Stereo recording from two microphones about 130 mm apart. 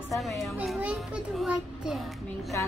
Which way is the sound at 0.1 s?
Centre (ahead or behind).